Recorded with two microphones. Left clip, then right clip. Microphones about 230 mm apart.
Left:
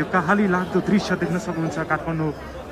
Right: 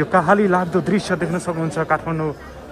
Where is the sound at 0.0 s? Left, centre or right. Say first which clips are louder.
Right 5 dB; centre.